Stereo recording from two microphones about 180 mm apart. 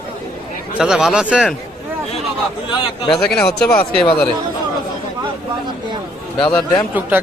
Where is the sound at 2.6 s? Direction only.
30° left (ahead or behind).